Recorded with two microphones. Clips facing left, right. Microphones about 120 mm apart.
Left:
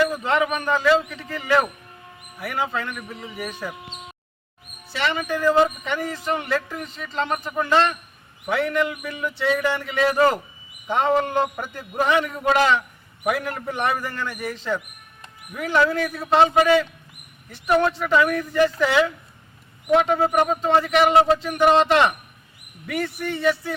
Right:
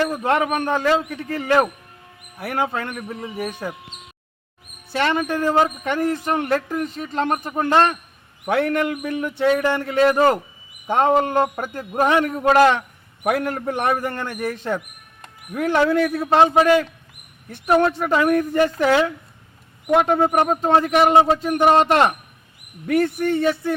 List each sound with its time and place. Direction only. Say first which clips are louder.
0.1 s speech: right 2 dB; 55° right (ahead or behind)
4.9 s a man's voice: right 4 dB; 50° right (ahead or behind)
17.8 s speech: right 1 dB; 45° right (ahead or behind)